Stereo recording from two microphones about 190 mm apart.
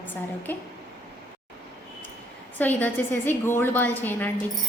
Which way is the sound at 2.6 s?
10° left (ahead or behind).